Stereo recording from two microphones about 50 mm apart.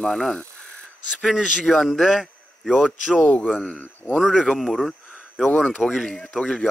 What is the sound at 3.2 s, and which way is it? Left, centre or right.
Speech, left.